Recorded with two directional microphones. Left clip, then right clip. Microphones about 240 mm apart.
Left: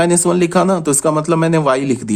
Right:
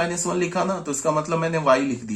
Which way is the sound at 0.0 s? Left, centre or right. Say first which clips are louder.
Left 10 dB; left.